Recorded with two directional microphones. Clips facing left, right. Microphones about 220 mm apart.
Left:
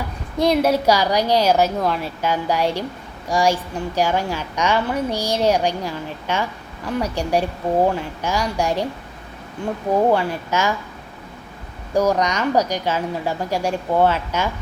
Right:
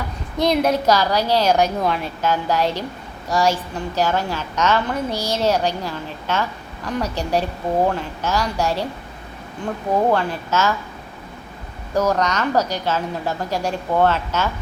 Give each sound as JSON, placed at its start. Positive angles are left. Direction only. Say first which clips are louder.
{"t": 0.3, "sound": "a woman's voice", "louder": "left 1 dB", "side_deg": 10}
{"t": 9.9, "sound": "a woman's voice", "louder": "left 1 dB", "side_deg": 10}
{"t": 11.9, "sound": "a woman's voice", "louder": "left 1 dB", "side_deg": 10}